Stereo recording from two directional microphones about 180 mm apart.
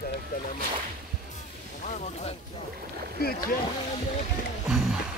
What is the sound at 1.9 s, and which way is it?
Music, 40° left (ahead or behind).